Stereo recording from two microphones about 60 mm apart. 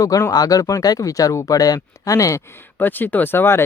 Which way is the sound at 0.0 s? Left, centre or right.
Left.